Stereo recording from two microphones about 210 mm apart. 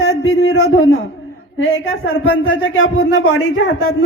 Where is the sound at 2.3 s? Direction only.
70° left (ahead or behind).